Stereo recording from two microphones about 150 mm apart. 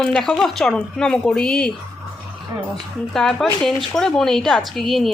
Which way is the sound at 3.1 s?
5° left (ahead or behind).